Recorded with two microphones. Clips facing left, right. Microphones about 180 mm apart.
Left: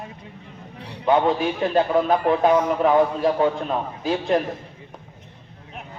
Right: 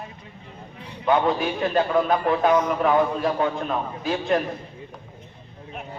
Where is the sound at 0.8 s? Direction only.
70° left (ahead or behind).